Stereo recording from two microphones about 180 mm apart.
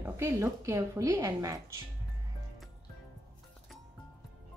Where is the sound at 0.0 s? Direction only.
15° right (ahead or behind).